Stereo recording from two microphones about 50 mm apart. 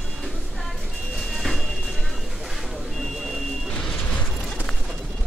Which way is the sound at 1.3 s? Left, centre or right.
Centre.